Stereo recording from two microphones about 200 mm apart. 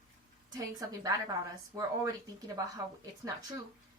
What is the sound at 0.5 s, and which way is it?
A woman's voice, 15° right (ahead or behind).